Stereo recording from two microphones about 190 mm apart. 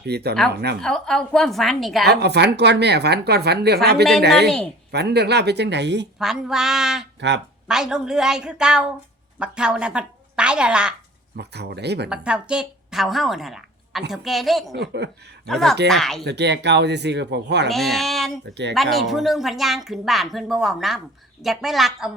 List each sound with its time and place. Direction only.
0.0 s speech: 60° right (ahead or behind)
0.8 s speech: centre (ahead or behind)
2.0 s speech: 60° right (ahead or behind)
4.4 s speech: 5° left (ahead or behind)
4.9 s speech: 60° right (ahead or behind)
6.1 s speech: centre (ahead or behind)
7.2 s speech: 65° right (ahead or behind)
7.7 s a woman's voice: 5° right (ahead or behind)
11.3 s speech: 60° right (ahead or behind)
12.0 s a woman's voice: 5° right (ahead or behind)
14.7 s speech: 60° right (ahead or behind)
15.4 s speech: centre (ahead or behind)
16.2 s speech: 65° right (ahead or behind)
17.7 s speech: centre (ahead or behind)